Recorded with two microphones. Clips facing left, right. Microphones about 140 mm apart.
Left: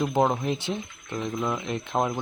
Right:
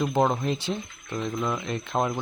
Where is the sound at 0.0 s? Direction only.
10° left (ahead or behind).